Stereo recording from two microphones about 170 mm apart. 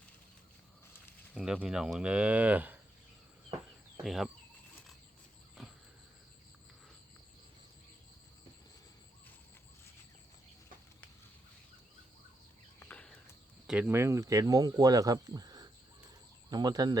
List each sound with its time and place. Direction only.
1.3 s cattle: centre (ahead or behind)
4.0 s speech: centre (ahead or behind)
12.8 s a sound: 10° left (ahead or behind)
13.7 s speech: 10° right (ahead or behind)